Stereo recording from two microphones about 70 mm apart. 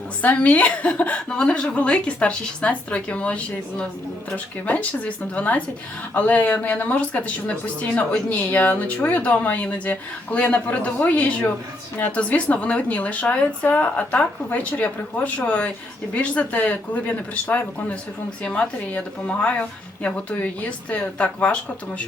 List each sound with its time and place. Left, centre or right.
0.2 s speech: left